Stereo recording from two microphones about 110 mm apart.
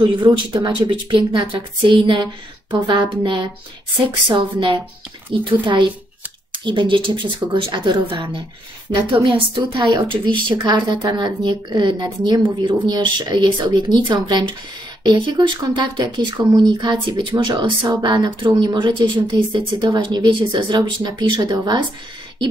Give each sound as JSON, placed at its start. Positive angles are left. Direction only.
{"t": 0.0, "sound": "speech", "side_deg": -40}